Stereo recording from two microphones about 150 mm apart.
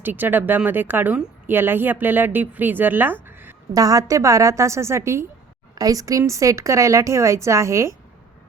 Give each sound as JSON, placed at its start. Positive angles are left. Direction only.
{"t": 0.0, "sound": "speech", "side_deg": -15}